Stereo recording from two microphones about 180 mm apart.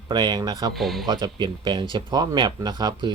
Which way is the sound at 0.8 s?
Centre (ahead or behind).